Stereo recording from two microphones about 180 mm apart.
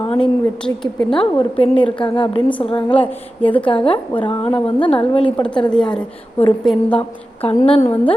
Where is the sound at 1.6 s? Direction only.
30° left (ahead or behind).